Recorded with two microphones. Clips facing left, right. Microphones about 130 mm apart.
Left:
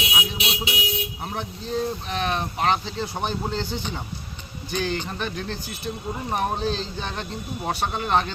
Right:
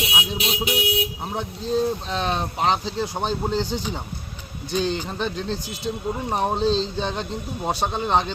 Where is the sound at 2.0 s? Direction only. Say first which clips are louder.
Right 1 dB; 30° right (ahead or behind).